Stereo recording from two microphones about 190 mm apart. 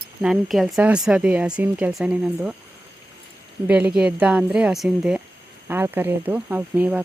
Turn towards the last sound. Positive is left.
turn(degrees=-10)  # may be behind; listen again after turning